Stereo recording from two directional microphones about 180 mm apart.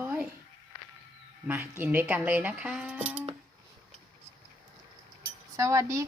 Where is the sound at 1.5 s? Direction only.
10° right (ahead or behind).